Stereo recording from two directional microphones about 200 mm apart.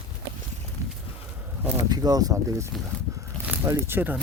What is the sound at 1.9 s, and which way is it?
Speech, 20° right (ahead or behind).